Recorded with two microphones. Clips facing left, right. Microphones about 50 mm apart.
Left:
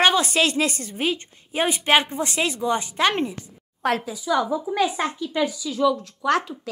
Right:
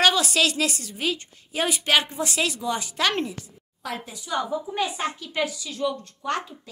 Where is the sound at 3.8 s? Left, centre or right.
Left.